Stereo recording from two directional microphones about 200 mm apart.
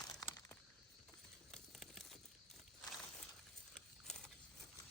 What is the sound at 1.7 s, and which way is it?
Crumpling, centre (ahead or behind).